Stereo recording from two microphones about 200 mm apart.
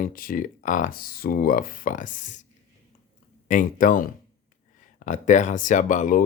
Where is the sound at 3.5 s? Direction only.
40° left (ahead or behind).